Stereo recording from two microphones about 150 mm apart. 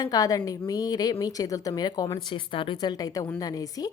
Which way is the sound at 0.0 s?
25° left (ahead or behind).